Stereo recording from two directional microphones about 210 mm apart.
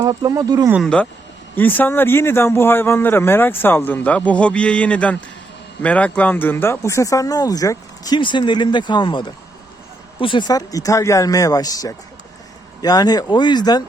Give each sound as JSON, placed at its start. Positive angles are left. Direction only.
{"t": 0.0, "sound": "speech", "side_deg": -15}
{"t": 0.8, "sound": "a man's voice", "side_deg": 5}